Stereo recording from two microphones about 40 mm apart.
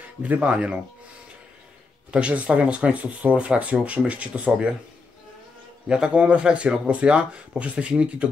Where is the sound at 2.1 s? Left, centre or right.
Right.